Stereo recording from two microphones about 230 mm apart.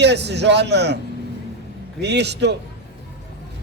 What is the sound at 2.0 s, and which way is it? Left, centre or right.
Speech, right.